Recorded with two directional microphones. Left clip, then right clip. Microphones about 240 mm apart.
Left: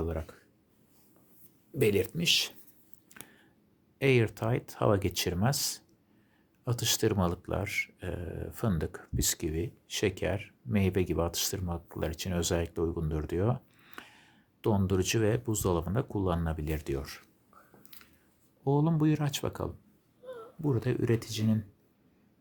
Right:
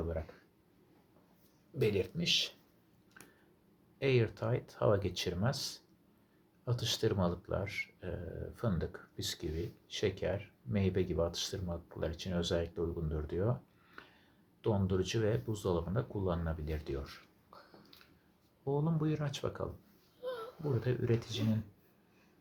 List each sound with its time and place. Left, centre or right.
1.8 s speech: left
3.2 s a sound: left
3.9 s speech: left
18.6 s speech: left
20.2 s a sound: right
20.8 s speech: left